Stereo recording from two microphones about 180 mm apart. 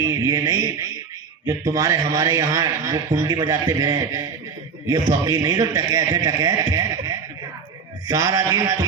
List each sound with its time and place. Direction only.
0.0 s a man's voice: 20° right (ahead or behind)